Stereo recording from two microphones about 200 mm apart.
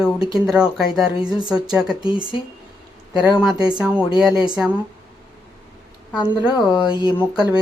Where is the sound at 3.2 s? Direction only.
5° right (ahead or behind).